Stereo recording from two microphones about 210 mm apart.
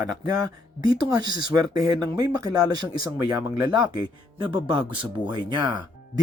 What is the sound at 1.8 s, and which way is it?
Speech, 20° right (ahead or behind).